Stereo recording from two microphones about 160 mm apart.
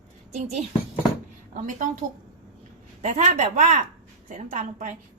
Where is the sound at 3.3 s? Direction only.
55° right (ahead or behind).